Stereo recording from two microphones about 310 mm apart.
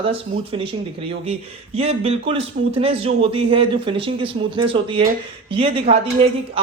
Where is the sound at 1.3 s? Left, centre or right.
Centre.